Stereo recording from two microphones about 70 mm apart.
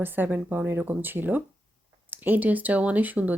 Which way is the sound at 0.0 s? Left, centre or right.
Right.